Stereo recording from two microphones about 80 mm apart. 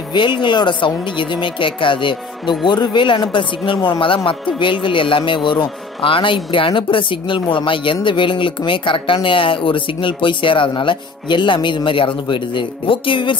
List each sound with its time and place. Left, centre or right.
0.1 s speech: left
2.6 s speech: left